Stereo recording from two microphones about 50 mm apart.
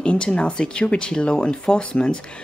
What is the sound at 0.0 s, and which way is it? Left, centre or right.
A woman's voice, left.